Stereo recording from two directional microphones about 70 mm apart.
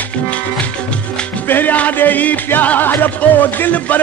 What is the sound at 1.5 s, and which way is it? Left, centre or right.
Music, left.